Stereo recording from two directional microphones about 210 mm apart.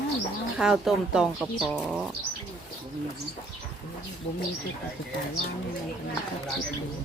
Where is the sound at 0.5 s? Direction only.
Centre (ahead or behind).